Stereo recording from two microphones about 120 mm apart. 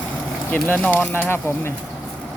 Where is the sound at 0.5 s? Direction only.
15° left (ahead or behind).